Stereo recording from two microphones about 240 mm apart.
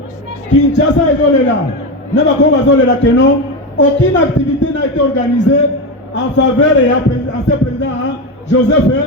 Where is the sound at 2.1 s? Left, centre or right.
Left.